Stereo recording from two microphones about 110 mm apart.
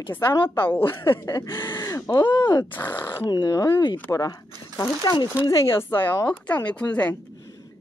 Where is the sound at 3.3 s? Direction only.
40° left (ahead or behind).